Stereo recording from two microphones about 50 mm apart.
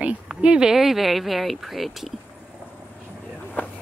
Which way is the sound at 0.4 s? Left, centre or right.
Right.